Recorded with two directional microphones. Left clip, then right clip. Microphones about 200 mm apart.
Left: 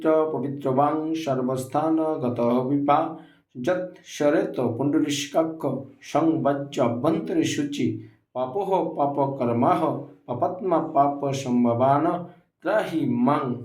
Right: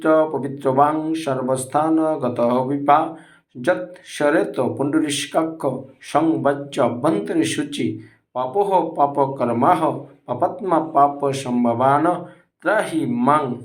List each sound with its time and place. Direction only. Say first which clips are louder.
0.0 s speech: right 4 dB; 5° right (ahead or behind)